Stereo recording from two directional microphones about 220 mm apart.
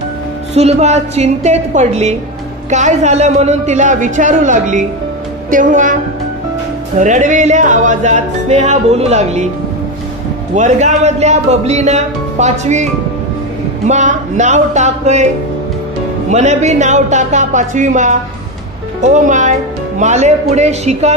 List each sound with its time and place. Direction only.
0.6 s music: 30° right (ahead or behind)
7.0 s music: 35° right (ahead or behind)
10.5 s music: 35° right (ahead or behind)
13.8 s music: 35° right (ahead or behind)
16.3 s music: 30° right (ahead or behind)